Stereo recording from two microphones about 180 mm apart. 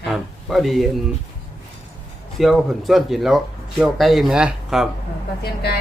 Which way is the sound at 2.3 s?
Centre (ahead or behind).